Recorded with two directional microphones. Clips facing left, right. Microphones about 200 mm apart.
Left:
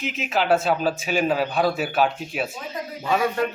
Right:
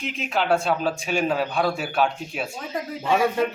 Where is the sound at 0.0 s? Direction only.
5° left (ahead or behind).